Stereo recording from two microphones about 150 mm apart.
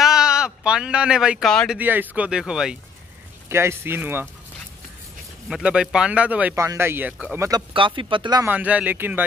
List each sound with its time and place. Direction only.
0.0 s a sound: 5° right (ahead or behind)
1.5 s speech: 5° left (ahead or behind)
1.8 s speech: 10° right (ahead or behind)
3.4 s speech: 15° right (ahead or behind)
5.5 s speech: 5° right (ahead or behind)
7.7 s speech: 35° right (ahead or behind)
8.5 s speech: 10° right (ahead or behind)